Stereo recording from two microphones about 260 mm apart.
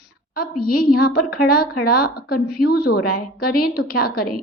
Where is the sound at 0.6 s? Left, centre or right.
Left.